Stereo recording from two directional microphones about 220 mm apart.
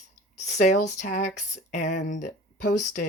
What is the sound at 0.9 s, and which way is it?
Speech, 35° left (ahead or behind).